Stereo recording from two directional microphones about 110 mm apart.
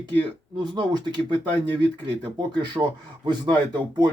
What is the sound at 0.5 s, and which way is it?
Speech, 40° right (ahead or behind).